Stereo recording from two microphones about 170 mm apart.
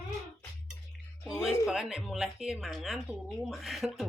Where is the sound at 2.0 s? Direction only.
5° right (ahead or behind).